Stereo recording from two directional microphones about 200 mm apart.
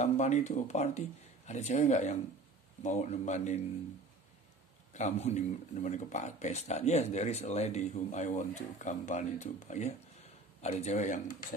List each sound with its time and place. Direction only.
0.0 s speech: 35° left (ahead or behind)
4.9 s speech: 35° left (ahead or behind)